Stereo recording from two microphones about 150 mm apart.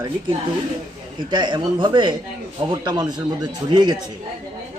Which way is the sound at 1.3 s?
30° right (ahead or behind).